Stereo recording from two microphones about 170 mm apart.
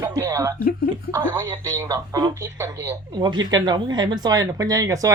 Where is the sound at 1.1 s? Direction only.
25° right (ahead or behind).